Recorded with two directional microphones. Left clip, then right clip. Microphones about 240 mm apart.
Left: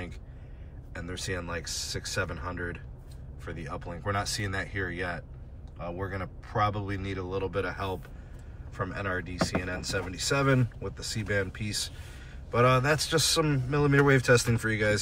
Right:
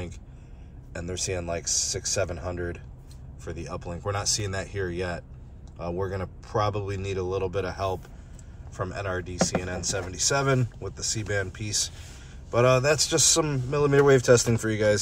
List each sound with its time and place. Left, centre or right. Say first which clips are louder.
0.9 s speech: right 4 dB; centre